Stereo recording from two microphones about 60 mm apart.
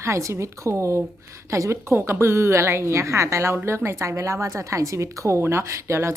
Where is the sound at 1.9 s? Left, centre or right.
Right.